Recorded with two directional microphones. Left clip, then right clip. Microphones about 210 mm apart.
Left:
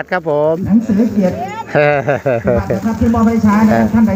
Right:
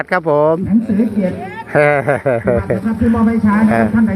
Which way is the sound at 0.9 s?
45° left (ahead or behind).